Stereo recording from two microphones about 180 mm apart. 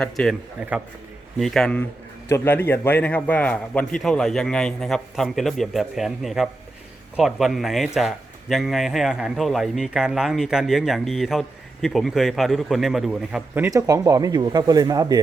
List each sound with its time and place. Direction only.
0.0 s a man's voice: 5° left (ahead or behind)
1.4 s a man's voice: centre (ahead or behind)
13.7 s speech: 20° right (ahead or behind)